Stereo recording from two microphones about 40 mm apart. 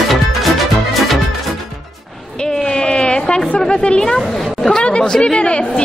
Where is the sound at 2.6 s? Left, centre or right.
Centre.